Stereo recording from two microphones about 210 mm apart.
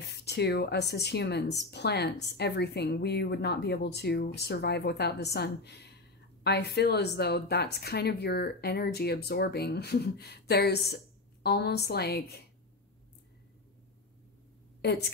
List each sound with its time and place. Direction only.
0.1 s speech: 50° left (ahead or behind)
14.8 s a woman's voice: 50° left (ahead or behind)